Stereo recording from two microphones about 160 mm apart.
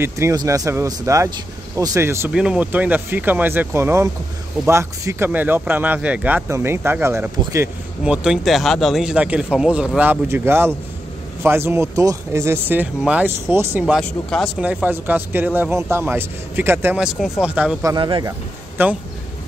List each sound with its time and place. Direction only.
0.0 s speech: 20° right (ahead or behind)
8.0 s speech: 5° right (ahead or behind)
13.9 s speech: centre (ahead or behind)
17.8 s speech: 30° right (ahead or behind)
18.8 s speech: 15° right (ahead or behind)